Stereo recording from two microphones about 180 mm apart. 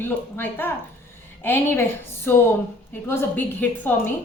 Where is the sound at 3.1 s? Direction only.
10° left (ahead or behind).